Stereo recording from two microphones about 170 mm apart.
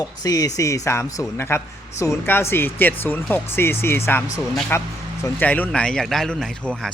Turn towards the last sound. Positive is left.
turn(degrees=5)  # may be behind; listen again after turning